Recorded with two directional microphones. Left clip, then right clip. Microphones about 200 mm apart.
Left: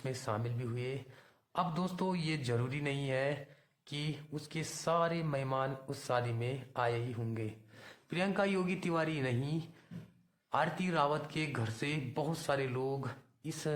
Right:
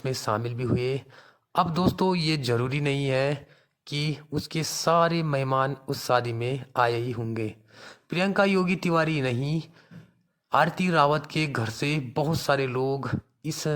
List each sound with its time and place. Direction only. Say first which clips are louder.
0.0 s speech: right 11 dB; 40° right (ahead or behind)